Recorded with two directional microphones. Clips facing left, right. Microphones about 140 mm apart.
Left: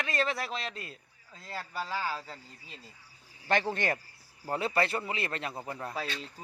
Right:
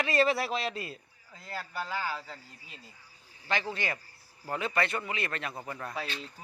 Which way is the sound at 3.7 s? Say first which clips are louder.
Left 4 dB; 50° left (ahead or behind).